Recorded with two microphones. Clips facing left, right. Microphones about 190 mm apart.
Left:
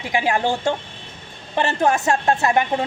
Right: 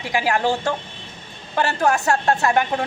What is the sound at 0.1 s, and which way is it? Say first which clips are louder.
A woman's voice: even; 20° left (ahead or behind).